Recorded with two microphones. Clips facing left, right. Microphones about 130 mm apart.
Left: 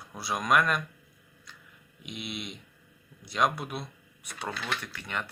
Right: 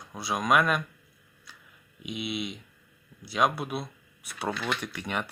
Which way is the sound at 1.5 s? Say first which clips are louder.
Even; 5° right (ahead or behind).